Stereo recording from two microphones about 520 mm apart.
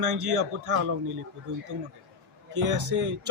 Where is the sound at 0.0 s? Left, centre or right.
Right.